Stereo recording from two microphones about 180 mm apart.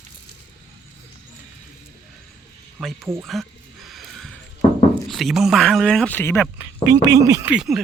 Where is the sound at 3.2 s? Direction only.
Centre (ahead or behind).